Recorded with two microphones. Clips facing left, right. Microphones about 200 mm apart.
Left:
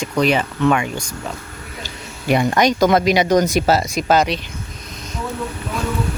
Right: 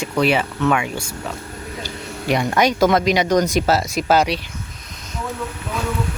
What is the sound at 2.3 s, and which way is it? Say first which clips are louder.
Speech: left 2 dB; 5° left (ahead or behind).